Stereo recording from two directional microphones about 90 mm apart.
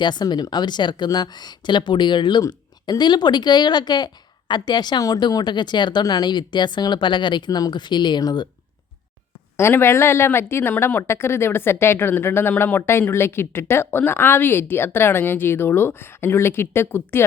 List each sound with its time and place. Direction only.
0.0 s speech: 55° left (ahead or behind)
2.4 s a woman's voice: 45° left (ahead or behind)
9.6 s speech: 30° left (ahead or behind)